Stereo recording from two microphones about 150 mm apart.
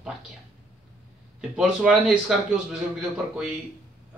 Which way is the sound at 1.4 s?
5° right (ahead or behind).